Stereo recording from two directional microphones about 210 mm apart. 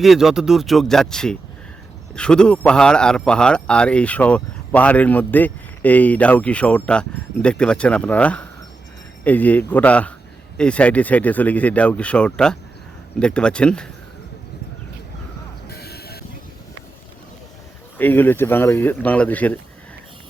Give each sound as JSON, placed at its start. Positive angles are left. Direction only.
{"t": 0.0, "sound": "a man's voice", "side_deg": 0}
{"t": 15.7, "sound": "music", "side_deg": 50}
{"t": 17.9, "sound": "speech", "side_deg": 10}